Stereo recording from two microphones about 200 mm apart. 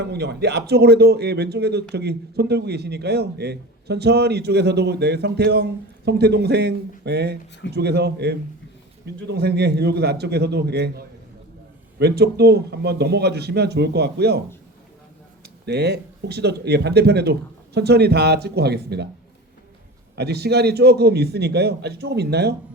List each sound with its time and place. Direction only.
0.0 s speech: 55° right (ahead or behind)
15.6 s speech: 55° right (ahead or behind)
20.1 s speech: 55° right (ahead or behind)